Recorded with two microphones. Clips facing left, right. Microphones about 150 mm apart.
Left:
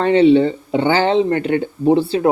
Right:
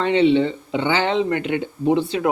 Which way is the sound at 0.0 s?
40° left (ahead or behind).